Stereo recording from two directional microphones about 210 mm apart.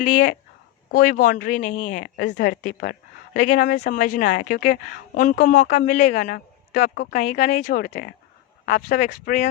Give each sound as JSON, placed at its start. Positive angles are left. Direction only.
{"t": 0.0, "sound": "a woman's voice", "side_deg": 35}
{"t": 2.1, "sound": "a woman's voice", "side_deg": 55}